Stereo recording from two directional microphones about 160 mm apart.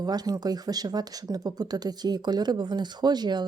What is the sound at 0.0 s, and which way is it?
Speech, 25° right (ahead or behind).